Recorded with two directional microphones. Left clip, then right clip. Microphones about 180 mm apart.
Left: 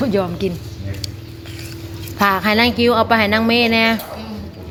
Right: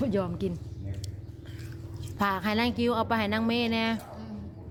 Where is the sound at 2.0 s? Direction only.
10° right (ahead or behind).